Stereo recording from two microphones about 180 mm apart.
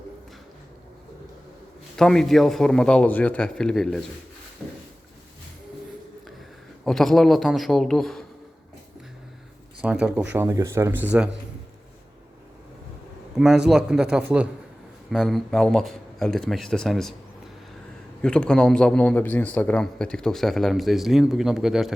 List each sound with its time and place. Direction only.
2.0 s a man's voice: 5° left (ahead or behind)
6.8 s a man's voice: centre (ahead or behind)
9.8 s a man's voice: 5° right (ahead or behind)
13.3 s a man's voice: 5° right (ahead or behind)
18.2 s a man's voice: 5° left (ahead or behind)